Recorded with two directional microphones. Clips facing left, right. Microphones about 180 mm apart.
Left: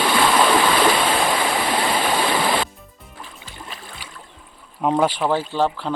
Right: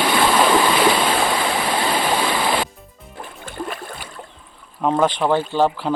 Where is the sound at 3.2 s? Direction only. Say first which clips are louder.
Right 10 dB; 55° right (ahead or behind).